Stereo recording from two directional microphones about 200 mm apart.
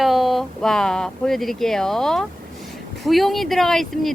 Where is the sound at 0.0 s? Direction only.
Centre (ahead or behind).